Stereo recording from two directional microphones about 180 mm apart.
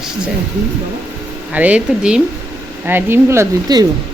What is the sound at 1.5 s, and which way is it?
Speech, 5° right (ahead or behind).